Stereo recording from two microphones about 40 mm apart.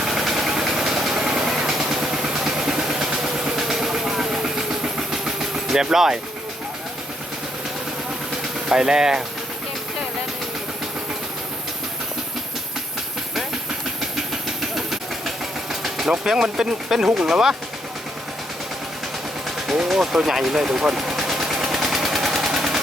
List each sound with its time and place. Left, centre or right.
0.1 s engine: centre
1.4 s vehicle: centre
8.7 s speech: centre
14.8 s steam: centre
16.0 s speech: centre
19.7 s vehicle: centre
22.4 s machine gun: centre